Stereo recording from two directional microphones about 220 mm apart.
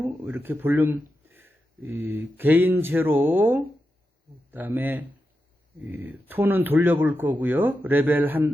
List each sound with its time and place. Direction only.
0.0 s speech: 10° right (ahead or behind)